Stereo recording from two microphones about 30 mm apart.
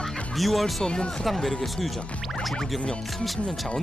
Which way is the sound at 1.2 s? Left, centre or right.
Centre.